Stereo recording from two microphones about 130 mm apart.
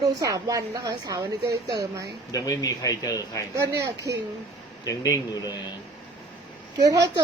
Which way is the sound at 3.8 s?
25° right (ahead or behind).